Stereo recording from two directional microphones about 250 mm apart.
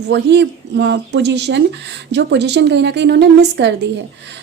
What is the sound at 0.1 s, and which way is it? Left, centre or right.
A woman's voice, right.